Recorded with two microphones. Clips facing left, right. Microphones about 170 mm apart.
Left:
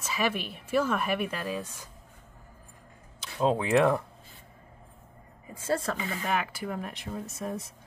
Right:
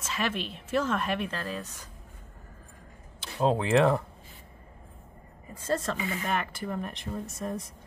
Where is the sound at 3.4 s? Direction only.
Centre (ahead or behind).